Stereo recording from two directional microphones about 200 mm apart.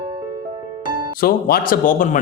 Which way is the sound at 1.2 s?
45° left (ahead or behind).